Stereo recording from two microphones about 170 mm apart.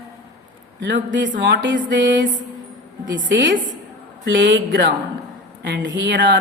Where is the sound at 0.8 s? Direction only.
90° right.